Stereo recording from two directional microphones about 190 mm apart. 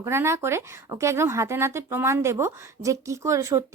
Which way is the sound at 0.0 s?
15° right (ahead or behind).